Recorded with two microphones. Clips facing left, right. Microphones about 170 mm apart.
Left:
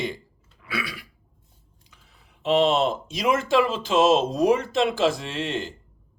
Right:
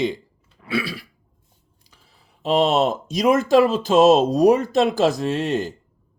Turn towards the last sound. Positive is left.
turn(degrees=-40)  # may be behind; listen again after turning